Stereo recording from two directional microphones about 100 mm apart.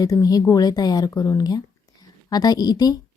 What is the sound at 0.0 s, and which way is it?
A woman's voice, 35° left (ahead or behind).